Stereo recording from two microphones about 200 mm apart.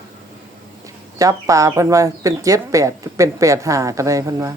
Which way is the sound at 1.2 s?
15° right (ahead or behind).